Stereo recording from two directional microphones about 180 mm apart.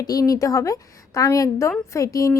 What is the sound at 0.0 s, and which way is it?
A woman's voice, 20° left (ahead or behind).